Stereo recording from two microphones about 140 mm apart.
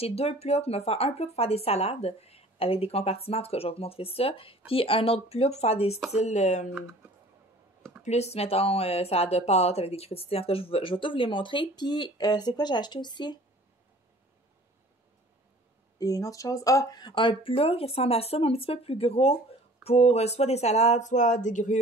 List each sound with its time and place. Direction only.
0.0 s speech: 45° left (ahead or behind)
8.0 s speech: 50° left (ahead or behind); by 13.4 s 30° left (ahead or behind)
16.0 s speech: 25° left (ahead or behind); by 21.7 s 60° left (ahead or behind)